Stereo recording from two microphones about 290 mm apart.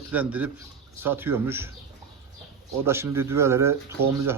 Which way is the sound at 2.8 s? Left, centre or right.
Centre.